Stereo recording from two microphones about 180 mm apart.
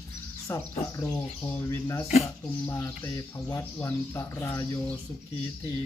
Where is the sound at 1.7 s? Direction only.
15° left (ahead or behind).